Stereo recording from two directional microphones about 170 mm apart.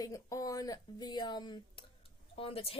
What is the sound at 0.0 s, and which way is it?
A woman's voice, 20° left (ahead or behind).